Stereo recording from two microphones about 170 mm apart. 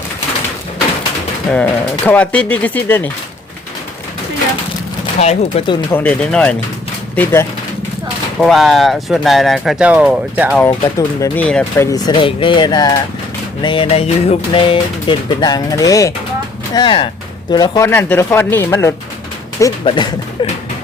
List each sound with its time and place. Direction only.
1.5 s speech: 10° left (ahead or behind)
5.2 s speech: 40° left (ahead or behind)
5.9 s speech: 10° left (ahead or behind)
8.4 s speech: centre (ahead or behind)
10.9 s speech: 20° left (ahead or behind)
11.4 s speech: 5° left (ahead or behind)
11.9 s speech: 20° left (ahead or behind)
17.8 s speech: 15° left (ahead or behind)
19.8 s speech: 30° left (ahead or behind)